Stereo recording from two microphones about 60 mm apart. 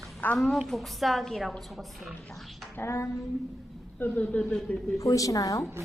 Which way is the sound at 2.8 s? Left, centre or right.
Left.